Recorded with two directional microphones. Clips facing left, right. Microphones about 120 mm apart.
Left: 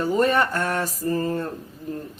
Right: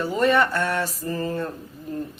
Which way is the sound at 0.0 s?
40° left (ahead or behind).